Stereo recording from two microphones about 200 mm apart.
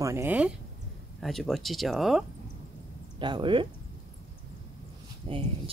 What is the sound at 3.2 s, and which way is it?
Speech, 25° right (ahead or behind).